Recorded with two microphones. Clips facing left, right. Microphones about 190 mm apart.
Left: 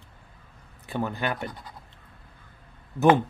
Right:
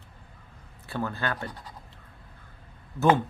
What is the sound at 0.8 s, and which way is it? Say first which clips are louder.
Speech: left 2 dB; 15° left (ahead or behind).